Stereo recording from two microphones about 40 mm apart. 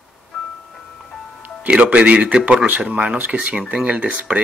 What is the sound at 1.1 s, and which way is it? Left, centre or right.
Music, centre.